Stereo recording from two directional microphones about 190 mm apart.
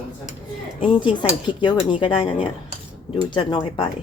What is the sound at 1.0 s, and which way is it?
Speech, 25° left (ahead or behind).